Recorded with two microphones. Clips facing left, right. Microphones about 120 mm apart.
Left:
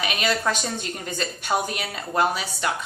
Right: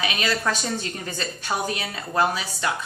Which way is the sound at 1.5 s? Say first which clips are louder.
Left 3 dB; 15° left (ahead or behind).